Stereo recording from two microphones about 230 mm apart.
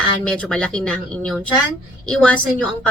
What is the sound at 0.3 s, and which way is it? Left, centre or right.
A woman's voice, centre.